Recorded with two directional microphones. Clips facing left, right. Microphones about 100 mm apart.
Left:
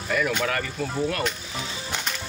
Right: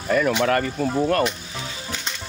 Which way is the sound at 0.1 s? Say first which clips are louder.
Right 5 dB; 35° right (ahead or behind).